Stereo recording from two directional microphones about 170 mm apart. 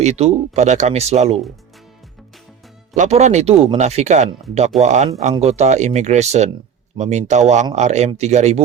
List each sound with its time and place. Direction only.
0.0 s speech: 40° right (ahead or behind)
2.9 s speech: 45° right (ahead or behind)